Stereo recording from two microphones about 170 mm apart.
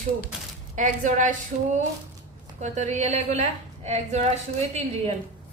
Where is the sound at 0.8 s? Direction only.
50° right (ahead or behind).